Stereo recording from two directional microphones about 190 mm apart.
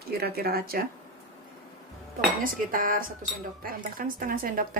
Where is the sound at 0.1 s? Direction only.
55° right (ahead or behind).